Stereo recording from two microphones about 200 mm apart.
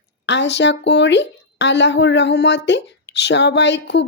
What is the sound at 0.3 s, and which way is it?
A woman's voice, 60° left (ahead or behind).